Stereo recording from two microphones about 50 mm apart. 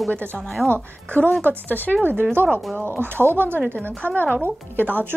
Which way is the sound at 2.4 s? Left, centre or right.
Right.